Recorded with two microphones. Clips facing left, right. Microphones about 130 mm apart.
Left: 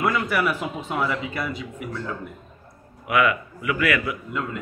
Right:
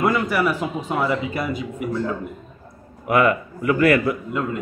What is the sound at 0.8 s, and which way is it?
Speech, centre (ahead or behind).